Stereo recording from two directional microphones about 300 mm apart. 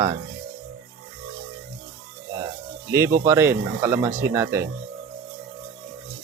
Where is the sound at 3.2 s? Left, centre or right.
Centre.